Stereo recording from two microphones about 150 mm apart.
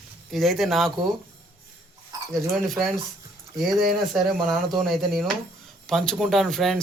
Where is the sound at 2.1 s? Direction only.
25° right (ahead or behind).